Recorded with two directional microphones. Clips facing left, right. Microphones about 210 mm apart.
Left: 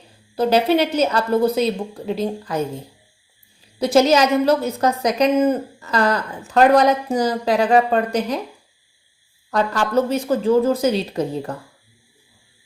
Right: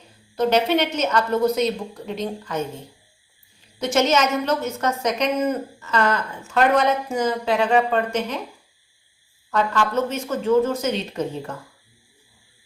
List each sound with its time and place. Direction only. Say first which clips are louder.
0.3 s a woman's voice: left 3 dB; 35° left (ahead or behind)
9.5 s a woman's voice: left 2 dB; 35° left (ahead or behind)